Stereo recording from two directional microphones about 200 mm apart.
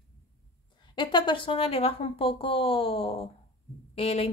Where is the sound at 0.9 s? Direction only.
25° left (ahead or behind).